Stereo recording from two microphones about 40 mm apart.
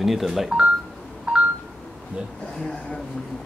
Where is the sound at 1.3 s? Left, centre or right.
Right.